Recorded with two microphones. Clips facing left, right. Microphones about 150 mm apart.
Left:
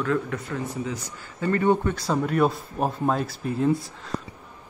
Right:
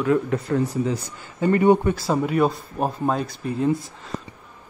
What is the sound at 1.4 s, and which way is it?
Speech, 15° right (ahead or behind).